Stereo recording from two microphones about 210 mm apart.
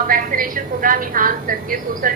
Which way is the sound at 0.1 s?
40° right (ahead or behind).